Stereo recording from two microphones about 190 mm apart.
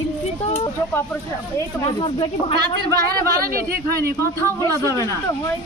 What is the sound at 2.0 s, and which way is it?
Speech, 25° left (ahead or behind).